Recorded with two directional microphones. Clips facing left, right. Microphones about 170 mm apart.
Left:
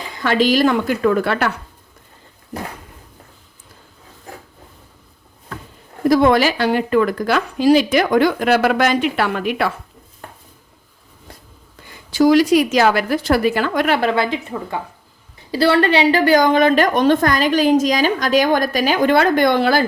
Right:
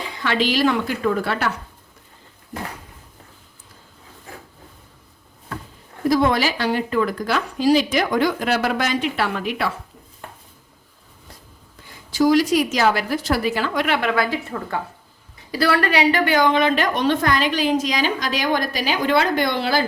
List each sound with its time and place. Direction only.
0.2 s a woman's voice: 45° left (ahead or behind); by 1.5 s 60° left (ahead or behind)
6.1 s speech: 55° left (ahead or behind)
12.1 s a woman's voice: 65° left (ahead or behind); by 14.8 s 15° left (ahead or behind)
15.5 s a woman's voice: 25° left (ahead or behind); by 19.8 s 50° left (ahead or behind)